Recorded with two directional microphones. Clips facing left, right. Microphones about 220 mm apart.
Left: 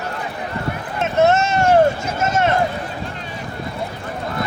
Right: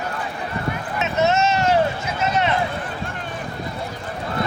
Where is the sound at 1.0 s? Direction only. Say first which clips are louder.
Left 4 dB; 50° left (ahead or behind).